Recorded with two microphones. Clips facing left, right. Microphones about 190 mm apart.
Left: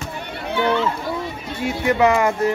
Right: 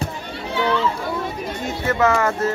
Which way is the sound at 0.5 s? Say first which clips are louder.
Left 1 dB; 55° left (ahead or behind).